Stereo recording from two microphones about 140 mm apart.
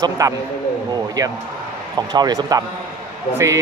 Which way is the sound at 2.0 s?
30° right (ahead or behind).